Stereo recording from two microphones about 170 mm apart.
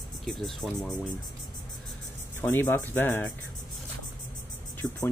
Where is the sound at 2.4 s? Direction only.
10° left (ahead or behind).